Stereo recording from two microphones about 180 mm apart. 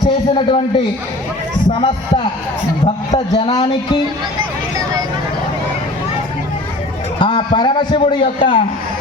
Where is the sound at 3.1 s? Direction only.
25° left (ahead or behind).